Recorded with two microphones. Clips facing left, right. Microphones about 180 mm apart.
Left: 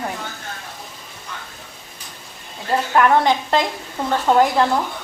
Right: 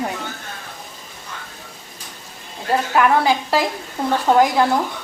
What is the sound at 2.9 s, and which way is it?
A woman's voice, 5° right (ahead or behind).